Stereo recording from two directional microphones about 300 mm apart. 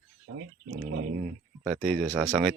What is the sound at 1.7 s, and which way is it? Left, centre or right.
Speech, centre.